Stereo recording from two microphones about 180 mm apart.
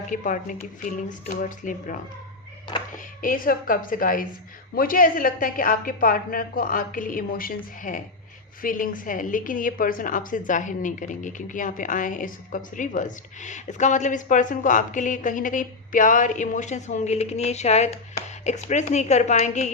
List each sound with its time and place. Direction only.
0.1 s a woman's voice: 45° left (ahead or behind)
3.2 s a woman's voice: 50° left (ahead or behind)